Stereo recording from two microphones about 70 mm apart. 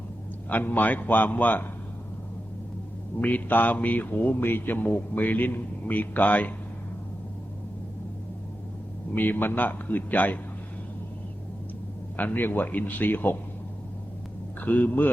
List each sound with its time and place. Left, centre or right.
0.4 s a man's voice: left
3.2 s a man's voice: left
9.1 s a man's voice: left
12.1 s a man's voice: left
14.6 s a man's voice: left